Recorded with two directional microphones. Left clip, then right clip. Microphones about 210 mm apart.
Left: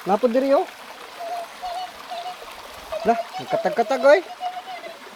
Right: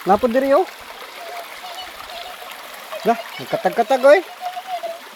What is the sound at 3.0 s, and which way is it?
Speech, 30° right (ahead or behind).